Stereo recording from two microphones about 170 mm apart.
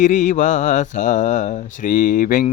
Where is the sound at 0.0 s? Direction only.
50° left (ahead or behind).